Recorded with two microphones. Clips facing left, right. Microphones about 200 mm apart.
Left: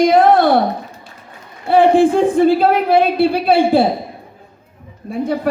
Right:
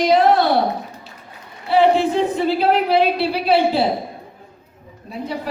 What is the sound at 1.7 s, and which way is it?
A woman's voice, 50° left (ahead or behind).